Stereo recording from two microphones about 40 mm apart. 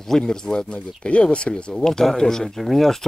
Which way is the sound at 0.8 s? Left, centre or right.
Left.